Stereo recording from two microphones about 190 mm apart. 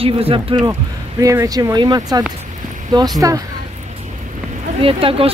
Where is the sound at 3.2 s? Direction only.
15° right (ahead or behind).